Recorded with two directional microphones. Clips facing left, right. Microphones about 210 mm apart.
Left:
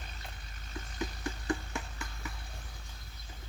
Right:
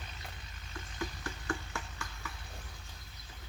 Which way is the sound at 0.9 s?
20° left (ahead or behind).